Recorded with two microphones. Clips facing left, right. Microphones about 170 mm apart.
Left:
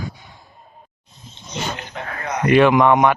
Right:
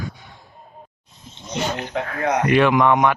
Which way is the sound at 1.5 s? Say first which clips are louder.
Right 4 dB; 75° right (ahead or behind).